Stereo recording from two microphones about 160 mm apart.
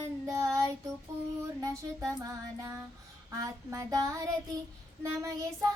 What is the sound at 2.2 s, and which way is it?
Child singing, 20° right (ahead or behind).